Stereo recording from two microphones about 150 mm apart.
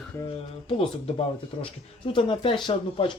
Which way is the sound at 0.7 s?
35° left (ahead or behind).